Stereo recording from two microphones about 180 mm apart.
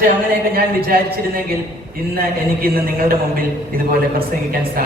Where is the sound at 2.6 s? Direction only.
55° right (ahead or behind).